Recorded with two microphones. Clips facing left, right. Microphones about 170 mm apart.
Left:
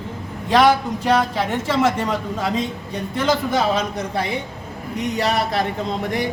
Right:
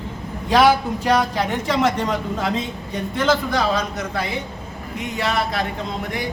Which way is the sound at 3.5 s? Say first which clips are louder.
Left 1 dB; 30° left (ahead or behind).